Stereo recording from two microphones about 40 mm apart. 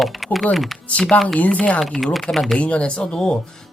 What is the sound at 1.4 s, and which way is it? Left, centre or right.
Speech, left.